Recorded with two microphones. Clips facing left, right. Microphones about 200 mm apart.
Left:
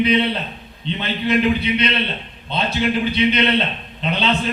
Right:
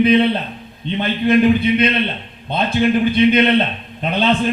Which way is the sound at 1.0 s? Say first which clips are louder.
Right 5 dB; 50° right (ahead or behind).